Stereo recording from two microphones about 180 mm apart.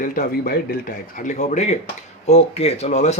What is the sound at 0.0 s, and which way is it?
Speech, 50° left (ahead or behind).